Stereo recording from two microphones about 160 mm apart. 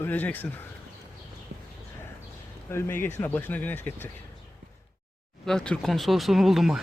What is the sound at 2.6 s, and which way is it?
Speech, 15° left (ahead or behind).